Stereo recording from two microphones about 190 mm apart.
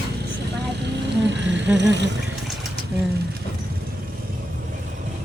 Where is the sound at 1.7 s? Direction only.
65° right (ahead or behind).